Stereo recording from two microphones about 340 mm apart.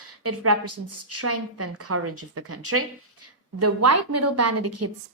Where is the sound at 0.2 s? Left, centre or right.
Right.